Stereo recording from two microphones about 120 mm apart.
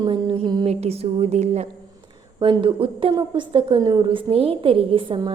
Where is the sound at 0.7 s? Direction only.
60° right (ahead or behind).